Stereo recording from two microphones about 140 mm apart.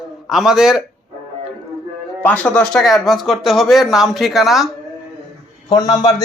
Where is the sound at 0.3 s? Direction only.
5° right (ahead or behind).